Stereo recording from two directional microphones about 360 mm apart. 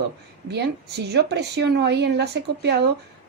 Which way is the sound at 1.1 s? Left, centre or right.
Right.